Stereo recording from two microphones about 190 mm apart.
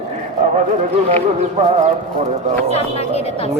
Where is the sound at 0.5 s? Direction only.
35° right (ahead or behind).